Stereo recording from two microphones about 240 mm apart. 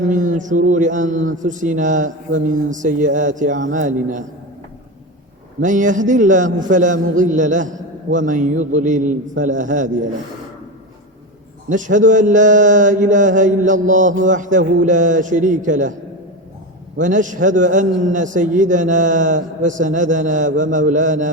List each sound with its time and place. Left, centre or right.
0.1 s mantra: right
5.6 s mantra: right
11.7 s mantra: right
17.0 s mantra: right